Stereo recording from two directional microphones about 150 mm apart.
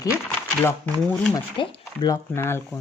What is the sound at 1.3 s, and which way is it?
A woman's voice, 25° left (ahead or behind).